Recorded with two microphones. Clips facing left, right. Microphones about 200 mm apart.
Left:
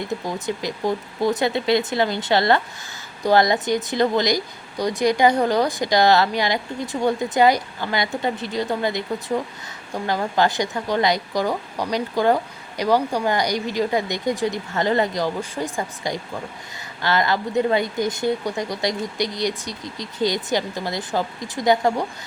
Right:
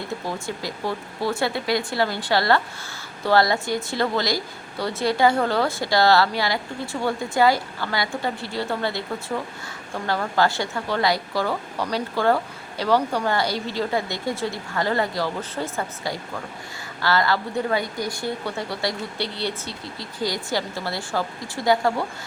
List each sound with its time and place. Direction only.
0.3 s speech: 20° left (ahead or behind)